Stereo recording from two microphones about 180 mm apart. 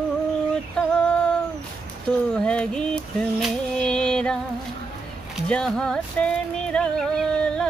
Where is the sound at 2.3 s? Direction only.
5° left (ahead or behind).